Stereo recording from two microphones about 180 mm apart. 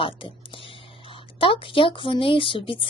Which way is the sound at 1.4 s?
30° left (ahead or behind).